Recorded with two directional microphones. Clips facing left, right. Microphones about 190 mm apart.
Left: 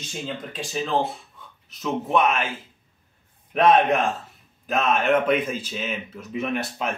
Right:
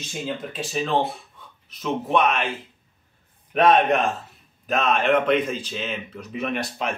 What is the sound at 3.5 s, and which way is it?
Speech, centre (ahead or behind).